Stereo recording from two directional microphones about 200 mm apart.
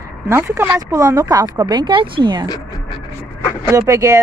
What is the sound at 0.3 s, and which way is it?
Speech, 10° right (ahead or behind).